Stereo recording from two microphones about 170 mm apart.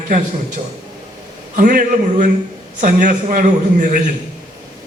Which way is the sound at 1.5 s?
50° right (ahead or behind).